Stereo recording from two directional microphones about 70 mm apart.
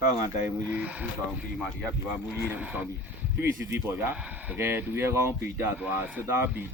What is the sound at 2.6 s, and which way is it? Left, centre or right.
Speech, right.